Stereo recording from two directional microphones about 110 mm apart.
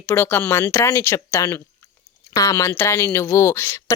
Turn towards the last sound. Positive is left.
turn(degrees=25)  # may be behind; listen again after turning